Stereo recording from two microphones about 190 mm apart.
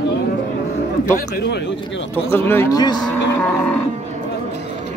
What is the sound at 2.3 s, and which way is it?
Speech, 10° left (ahead or behind).